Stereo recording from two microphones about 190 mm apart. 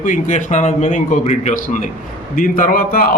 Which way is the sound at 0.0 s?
40° left (ahead or behind).